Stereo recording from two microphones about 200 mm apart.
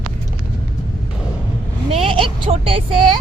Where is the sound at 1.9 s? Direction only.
25° right (ahead or behind).